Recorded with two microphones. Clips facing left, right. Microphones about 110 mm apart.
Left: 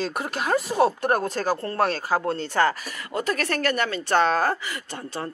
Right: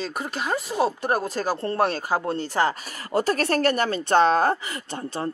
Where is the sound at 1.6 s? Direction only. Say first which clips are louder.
Right 1 dB; 20° right (ahead or behind).